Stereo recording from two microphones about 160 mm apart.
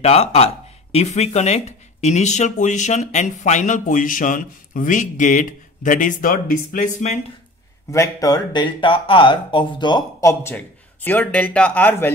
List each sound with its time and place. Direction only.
0.0 s speech: 40° left (ahead or behind)
7.9 s speech: 20° left (ahead or behind)
10.4 s speech: 10° left (ahead or behind)